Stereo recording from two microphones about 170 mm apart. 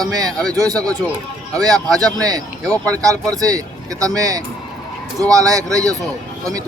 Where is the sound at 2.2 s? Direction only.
20° right (ahead or behind).